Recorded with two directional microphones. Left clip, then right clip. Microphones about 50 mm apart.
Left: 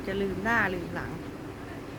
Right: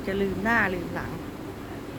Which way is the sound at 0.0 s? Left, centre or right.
Centre.